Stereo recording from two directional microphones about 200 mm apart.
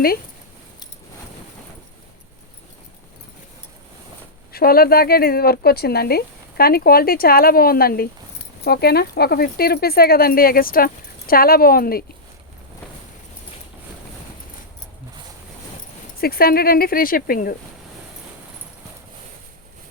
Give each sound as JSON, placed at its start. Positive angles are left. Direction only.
{"t": 4.5, "sound": "speech", "side_deg": 50}
{"t": 16.2, "sound": "speech", "side_deg": 50}